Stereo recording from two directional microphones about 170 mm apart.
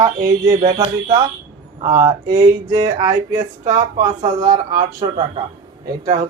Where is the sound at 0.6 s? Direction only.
35° right (ahead or behind).